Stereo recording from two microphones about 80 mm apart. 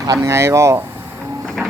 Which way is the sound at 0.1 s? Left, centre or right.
Right.